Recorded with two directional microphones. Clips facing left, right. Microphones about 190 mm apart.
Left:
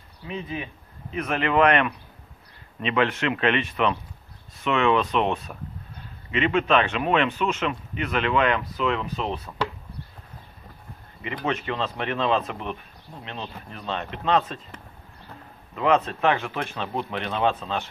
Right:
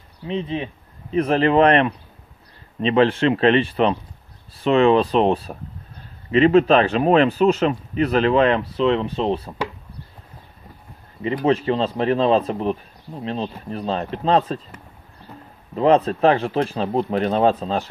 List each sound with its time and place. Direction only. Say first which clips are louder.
0.3 s speech: right 7 dB; 30° right (ahead or behind)
11.2 s speech: right 9 dB; 30° right (ahead or behind)
15.7 s speech: right 6 dB; 35° right (ahead or behind)